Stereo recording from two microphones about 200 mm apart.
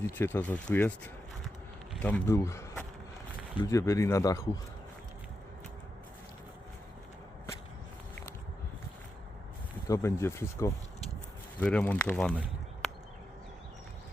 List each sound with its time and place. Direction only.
0.2 s speech: 10° left (ahead or behind)
9.9 s speech: 15° left (ahead or behind)